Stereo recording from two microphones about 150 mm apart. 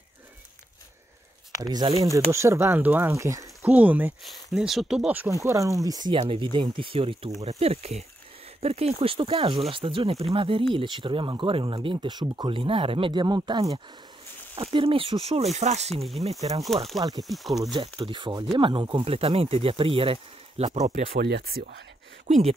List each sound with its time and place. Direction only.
1.6 s speech: 25° right (ahead or behind)
3.7 s speech: 10° right (ahead or behind)
5.3 s speech: 20° right (ahead or behind)
14.5 s speech: 35° right (ahead or behind)
16.0 s speech: centre (ahead or behind)
17.7 s speech: 35° right (ahead or behind)
21.0 s speech: 90° right